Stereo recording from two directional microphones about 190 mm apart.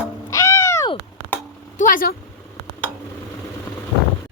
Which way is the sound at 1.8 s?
45° left (ahead or behind).